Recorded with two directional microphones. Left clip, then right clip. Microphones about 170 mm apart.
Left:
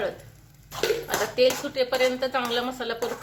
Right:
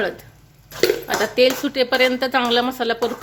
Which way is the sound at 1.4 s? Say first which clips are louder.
Right 5 dB; 55° right (ahead or behind).